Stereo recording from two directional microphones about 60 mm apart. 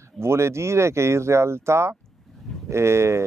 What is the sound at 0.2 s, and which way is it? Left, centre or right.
Speech, right.